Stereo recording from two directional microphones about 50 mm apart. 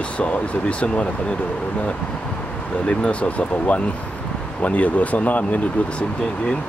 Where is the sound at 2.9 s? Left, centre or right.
Left.